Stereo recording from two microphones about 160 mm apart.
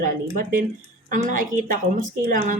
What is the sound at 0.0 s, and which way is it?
Speech, 60° right (ahead or behind).